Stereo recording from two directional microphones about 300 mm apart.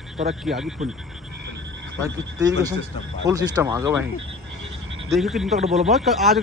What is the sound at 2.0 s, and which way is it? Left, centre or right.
Speech, centre.